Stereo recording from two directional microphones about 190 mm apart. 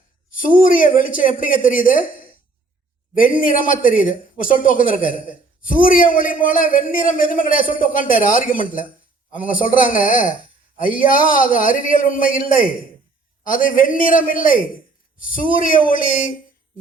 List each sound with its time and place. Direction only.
0.3 s a woman's voice: 45° left (ahead or behind)
3.2 s a woman's voice: 45° left (ahead or behind)